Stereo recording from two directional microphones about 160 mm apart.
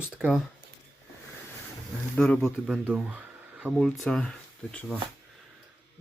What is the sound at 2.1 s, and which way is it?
Speech, 5° left (ahead or behind).